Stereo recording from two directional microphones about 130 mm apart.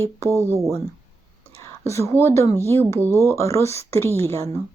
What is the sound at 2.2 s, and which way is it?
Speech, 20° left (ahead or behind).